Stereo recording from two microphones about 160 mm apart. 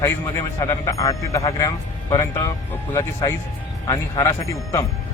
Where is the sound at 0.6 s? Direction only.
20° left (ahead or behind).